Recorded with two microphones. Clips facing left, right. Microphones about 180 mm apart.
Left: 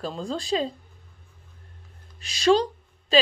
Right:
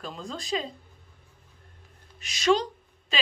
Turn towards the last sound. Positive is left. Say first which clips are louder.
# left 9 dB
turn(degrees=35)  # may be behind; listen again after turning